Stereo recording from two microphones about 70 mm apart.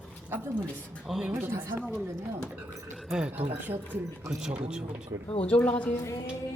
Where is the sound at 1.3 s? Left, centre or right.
Right.